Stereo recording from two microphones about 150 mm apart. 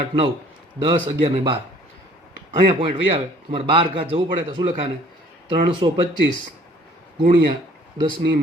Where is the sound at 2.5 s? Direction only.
35° right (ahead or behind).